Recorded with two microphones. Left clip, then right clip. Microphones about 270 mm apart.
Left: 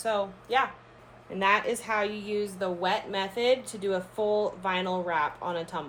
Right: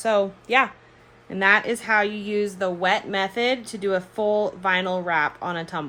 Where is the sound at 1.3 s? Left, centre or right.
Right.